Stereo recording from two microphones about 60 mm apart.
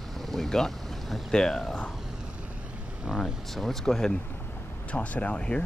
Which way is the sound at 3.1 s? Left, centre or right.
Centre.